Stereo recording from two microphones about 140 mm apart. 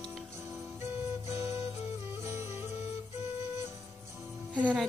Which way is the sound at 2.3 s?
20° right (ahead or behind).